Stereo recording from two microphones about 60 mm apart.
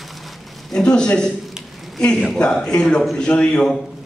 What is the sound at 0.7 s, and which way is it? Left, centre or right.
Speech, centre.